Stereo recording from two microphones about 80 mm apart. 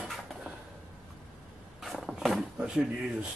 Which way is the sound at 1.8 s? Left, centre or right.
Centre.